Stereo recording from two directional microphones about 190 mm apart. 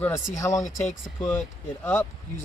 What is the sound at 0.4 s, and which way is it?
Speech, 15° left (ahead or behind).